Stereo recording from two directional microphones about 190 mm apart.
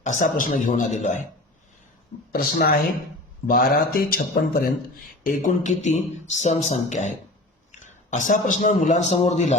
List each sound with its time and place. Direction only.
0.0 s a man's voice: 40° left (ahead or behind)
2.3 s a man's voice: 55° left (ahead or behind); by 9.6 s 35° left (ahead or behind)